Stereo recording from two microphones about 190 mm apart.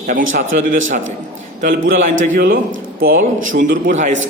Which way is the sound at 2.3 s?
50° right (ahead or behind).